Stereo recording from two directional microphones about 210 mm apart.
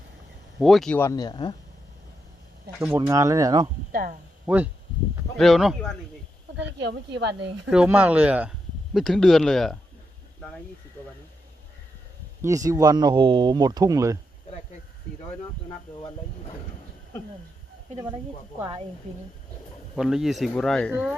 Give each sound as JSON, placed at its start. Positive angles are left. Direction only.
{"t": 0.6, "sound": "speech", "side_deg": 0}
{"t": 2.8, "sound": "speech", "side_deg": -10}
{"t": 3.9, "sound": "speech", "side_deg": -40}
{"t": 4.4, "sound": "speech", "side_deg": -5}
{"t": 6.7, "sound": "speech", "side_deg": -55}
{"t": 7.7, "sound": "speech", "side_deg": -5}
{"t": 12.4, "sound": "speech", "side_deg": -15}
{"t": 20.0, "sound": "speech", "side_deg": 0}